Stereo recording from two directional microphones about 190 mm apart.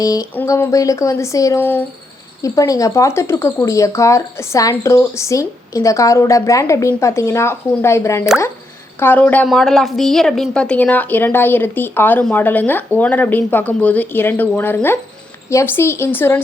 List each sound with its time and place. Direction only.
0.0 s a woman's voice: 20° left (ahead or behind)